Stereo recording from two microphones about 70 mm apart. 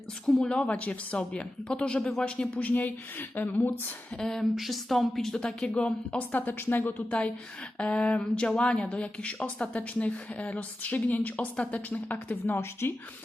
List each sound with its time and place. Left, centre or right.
0.4 s a woman's voice: centre
4.2 s a woman's voice: centre; by 13.0 s left